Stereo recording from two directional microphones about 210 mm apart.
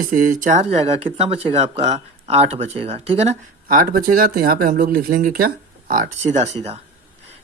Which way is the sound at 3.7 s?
40° right (ahead or behind).